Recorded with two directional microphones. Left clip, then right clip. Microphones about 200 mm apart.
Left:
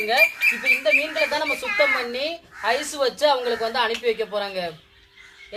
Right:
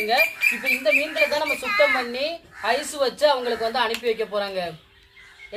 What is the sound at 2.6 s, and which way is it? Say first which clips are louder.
A woman's voice: even; 20° left (ahead or behind).